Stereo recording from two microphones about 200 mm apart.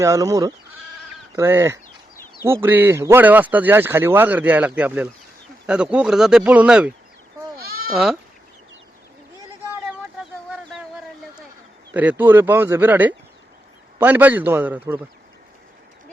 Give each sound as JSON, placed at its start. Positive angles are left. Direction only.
{"t": 0.0, "sound": "speech", "side_deg": -15}
{"t": 7.5, "sound": "bleat", "side_deg": -50}
{"t": 7.9, "sound": "speech", "side_deg": 0}
{"t": 10.5, "sound": "a sound", "side_deg": -5}
{"t": 11.9, "sound": "speech", "side_deg": -10}